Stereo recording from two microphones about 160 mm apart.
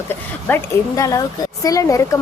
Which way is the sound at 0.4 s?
15° left (ahead or behind).